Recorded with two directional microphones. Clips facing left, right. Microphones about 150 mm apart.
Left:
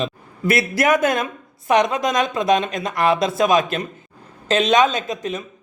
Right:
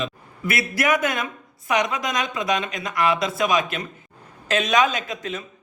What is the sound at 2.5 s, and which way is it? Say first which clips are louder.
Speech: left 7 dB; 45° left (ahead or behind).